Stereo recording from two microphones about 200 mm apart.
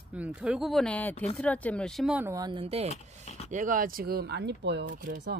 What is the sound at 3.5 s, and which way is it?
Speech, 40° right (ahead or behind).